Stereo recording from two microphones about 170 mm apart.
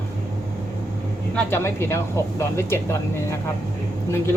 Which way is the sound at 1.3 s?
15° left (ahead or behind).